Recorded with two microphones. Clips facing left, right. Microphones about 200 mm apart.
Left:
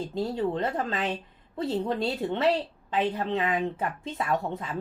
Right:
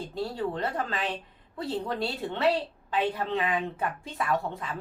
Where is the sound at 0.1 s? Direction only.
25° left (ahead or behind).